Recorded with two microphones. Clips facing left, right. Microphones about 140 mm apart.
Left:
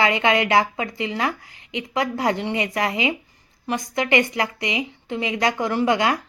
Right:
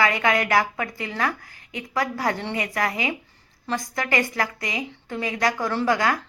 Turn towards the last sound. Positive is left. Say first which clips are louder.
# left 2 dB
turn(degrees=20)  # may be behind; listen again after turning